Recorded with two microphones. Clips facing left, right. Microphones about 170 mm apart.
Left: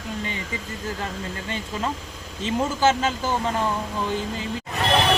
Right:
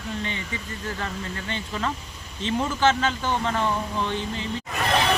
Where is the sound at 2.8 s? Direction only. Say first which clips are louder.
Left 1 dB; 10° left (ahead or behind).